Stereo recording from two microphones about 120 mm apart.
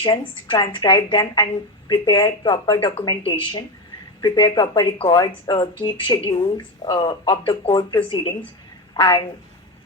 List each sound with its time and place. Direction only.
0.0 s speech: 40° left (ahead or behind)